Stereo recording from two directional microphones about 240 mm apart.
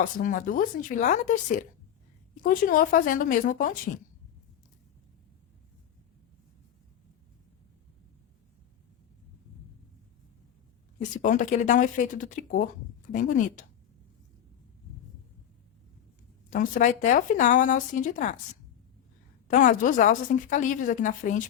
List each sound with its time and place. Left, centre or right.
0.2 s a woman's voice: left
11.1 s a woman's voice: left
16.5 s a woman's voice: left
19.5 s a woman's voice: left